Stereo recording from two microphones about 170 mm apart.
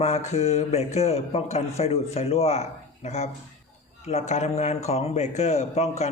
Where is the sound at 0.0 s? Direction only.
40° left (ahead or behind).